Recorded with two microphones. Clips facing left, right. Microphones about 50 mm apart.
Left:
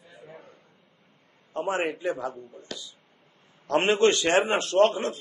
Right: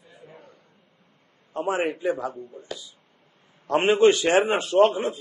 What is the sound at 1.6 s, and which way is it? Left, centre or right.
Speech, centre.